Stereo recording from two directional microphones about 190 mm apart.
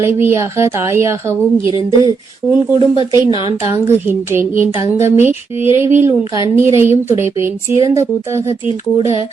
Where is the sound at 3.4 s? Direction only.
15° right (ahead or behind).